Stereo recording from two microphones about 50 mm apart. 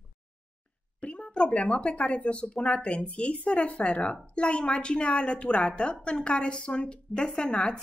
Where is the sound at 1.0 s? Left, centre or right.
Left.